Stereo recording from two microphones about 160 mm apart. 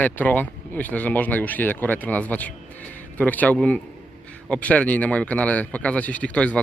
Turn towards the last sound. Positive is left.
turn(degrees=10)  # may be behind; listen again after turning